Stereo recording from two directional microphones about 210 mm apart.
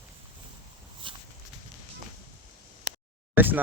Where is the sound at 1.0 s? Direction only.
25° right (ahead or behind).